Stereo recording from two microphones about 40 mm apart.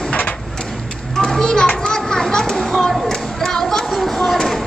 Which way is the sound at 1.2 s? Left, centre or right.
Centre.